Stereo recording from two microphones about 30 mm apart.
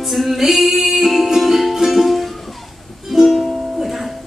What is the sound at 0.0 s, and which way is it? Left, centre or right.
Music, centre.